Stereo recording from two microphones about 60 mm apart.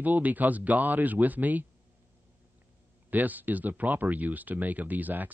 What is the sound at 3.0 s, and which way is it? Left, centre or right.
Speech, right.